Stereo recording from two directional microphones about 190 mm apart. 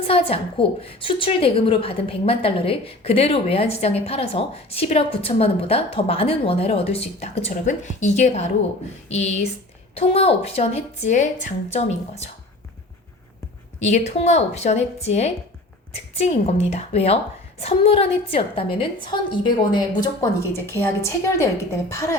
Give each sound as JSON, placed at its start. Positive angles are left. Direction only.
{"t": 0.1, "sound": "a woman's voice", "side_deg": 30}
{"t": 13.7, "sound": "a woman's voice", "side_deg": 35}